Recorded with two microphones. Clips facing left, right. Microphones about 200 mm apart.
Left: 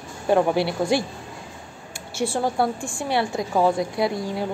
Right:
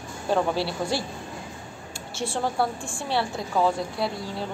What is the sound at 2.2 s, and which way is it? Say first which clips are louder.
Speech: left 4 dB; 10° left (ahead or behind).